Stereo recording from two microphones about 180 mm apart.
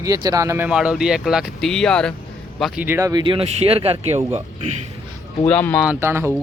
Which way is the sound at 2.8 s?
15° right (ahead or behind).